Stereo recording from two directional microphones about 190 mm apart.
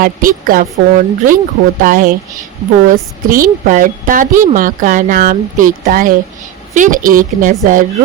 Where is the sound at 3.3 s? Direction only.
45° right (ahead or behind).